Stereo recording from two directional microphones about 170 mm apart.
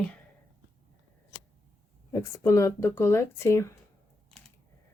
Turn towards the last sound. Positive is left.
turn(degrees=15)  # may be behind; listen again after turning